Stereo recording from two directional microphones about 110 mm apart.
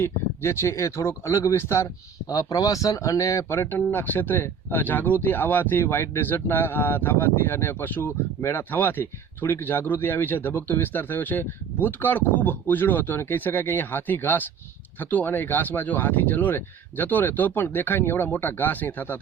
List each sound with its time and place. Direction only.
0.0 s speech: 25° left (ahead or behind)